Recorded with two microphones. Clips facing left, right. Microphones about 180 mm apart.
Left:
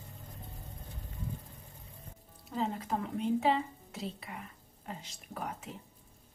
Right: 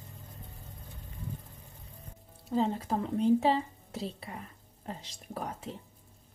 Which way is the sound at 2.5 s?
30° right (ahead or behind).